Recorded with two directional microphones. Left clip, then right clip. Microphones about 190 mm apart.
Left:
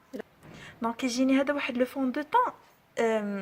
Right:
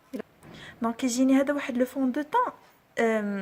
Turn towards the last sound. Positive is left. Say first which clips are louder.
# right 1 dB
turn(degrees=0)  # may be behind; listen again after turning